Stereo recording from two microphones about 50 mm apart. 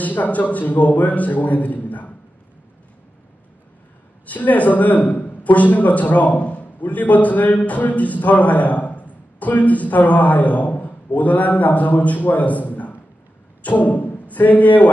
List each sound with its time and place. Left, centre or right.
0.0 s a man's voice: left
4.3 s a man's voice: left